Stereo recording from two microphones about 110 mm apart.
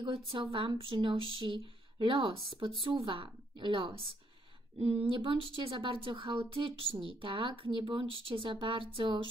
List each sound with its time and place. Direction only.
0.0 s a woman's voice: 50° right (ahead or behind)
4.7 s speech: 60° right (ahead or behind)